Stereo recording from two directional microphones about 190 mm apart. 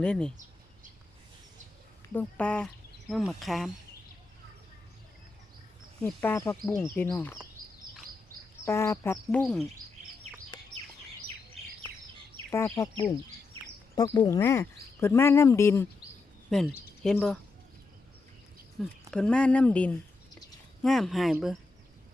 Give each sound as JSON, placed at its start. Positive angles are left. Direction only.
{"t": 0.0, "sound": "speech", "side_deg": 5}
{"t": 2.1, "sound": "speech", "side_deg": 5}
{"t": 6.0, "sound": "speech", "side_deg": 10}
{"t": 8.6, "sound": "speech", "side_deg": 15}
{"t": 12.5, "sound": "speech", "side_deg": 15}
{"t": 13.9, "sound": "speech", "side_deg": 20}
{"t": 16.5, "sound": "speech", "side_deg": 0}
{"t": 18.8, "sound": "speech", "side_deg": 5}